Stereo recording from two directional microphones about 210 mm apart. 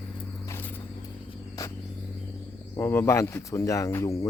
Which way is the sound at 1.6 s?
15° left (ahead or behind).